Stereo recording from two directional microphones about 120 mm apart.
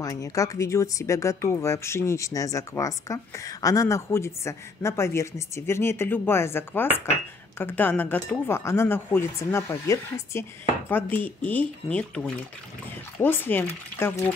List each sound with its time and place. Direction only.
0.0 s speech: 30° left (ahead or behind)
10.9 s speech: 15° left (ahead or behind)